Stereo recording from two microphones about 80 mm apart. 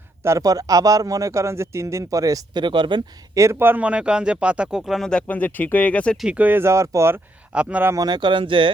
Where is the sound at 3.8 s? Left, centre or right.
Centre.